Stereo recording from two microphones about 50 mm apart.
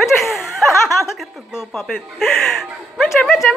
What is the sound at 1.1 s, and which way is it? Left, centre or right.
A woman's voice, centre.